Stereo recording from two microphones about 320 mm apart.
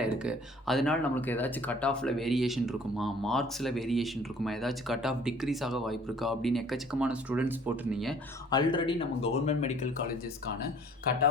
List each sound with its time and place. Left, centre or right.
0.0 s speech: centre
8.4 s speech: centre